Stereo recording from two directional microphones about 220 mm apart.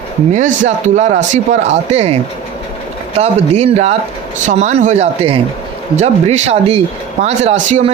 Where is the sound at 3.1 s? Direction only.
30° right (ahead or behind).